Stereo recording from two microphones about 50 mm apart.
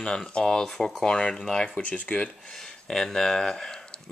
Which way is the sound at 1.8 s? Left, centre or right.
Left.